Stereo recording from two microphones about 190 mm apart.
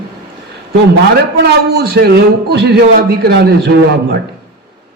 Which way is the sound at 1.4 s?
55° right (ahead or behind).